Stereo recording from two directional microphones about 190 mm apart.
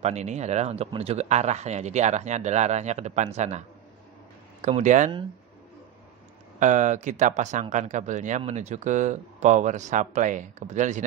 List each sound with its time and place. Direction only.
0.0 s speech: 35° right (ahead or behind)
6.6 s speech: 40° right (ahead or behind)